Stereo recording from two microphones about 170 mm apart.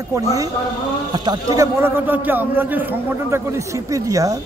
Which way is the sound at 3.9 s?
20° right (ahead or behind).